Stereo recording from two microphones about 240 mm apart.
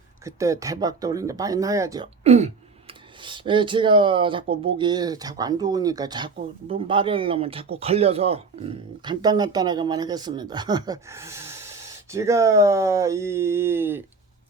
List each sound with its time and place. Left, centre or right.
0.3 s speech: centre
2.2 s speech: right; by 14.0 s centre